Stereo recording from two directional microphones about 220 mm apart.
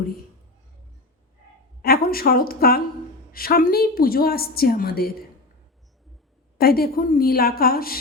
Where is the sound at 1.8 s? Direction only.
45° left (ahead or behind).